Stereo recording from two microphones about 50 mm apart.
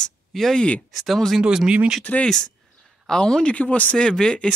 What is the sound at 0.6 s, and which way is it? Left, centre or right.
Speech, left.